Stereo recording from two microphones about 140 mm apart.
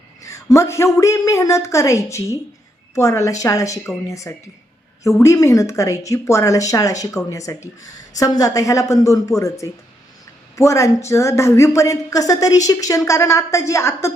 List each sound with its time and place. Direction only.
0.2 s a woman's voice: 25° left (ahead or behind)